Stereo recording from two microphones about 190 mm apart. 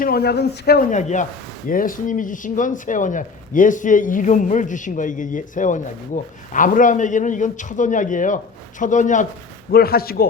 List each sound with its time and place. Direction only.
0.0 s speech: 55° left (ahead or behind)
0.9 s speech: 40° left (ahead or behind)
9.7 s speech: 55° left (ahead or behind)